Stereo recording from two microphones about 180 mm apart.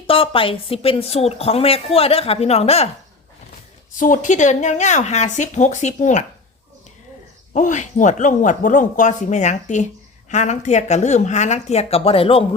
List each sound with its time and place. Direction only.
0.1 s speech: 30° left (ahead or behind)
3.9 s speech: 45° left (ahead or behind)
7.5 s speech: 45° left (ahead or behind)